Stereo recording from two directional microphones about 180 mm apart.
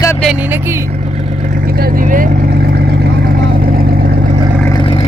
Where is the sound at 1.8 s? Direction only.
55° right (ahead or behind).